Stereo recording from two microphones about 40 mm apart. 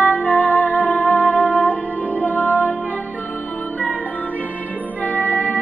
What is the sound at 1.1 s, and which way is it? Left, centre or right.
Music, left.